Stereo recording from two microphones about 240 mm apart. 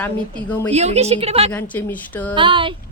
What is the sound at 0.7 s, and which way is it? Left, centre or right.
Speech, right.